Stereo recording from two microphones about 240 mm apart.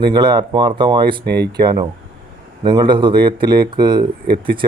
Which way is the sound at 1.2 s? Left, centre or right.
Right.